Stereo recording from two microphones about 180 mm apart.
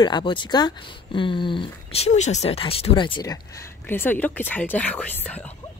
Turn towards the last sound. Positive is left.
turn(degrees=10)  # may be behind; listen again after turning